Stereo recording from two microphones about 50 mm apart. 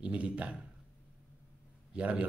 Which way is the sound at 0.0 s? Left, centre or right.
Right.